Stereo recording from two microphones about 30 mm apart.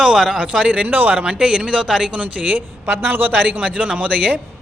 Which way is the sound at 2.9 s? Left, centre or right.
Right.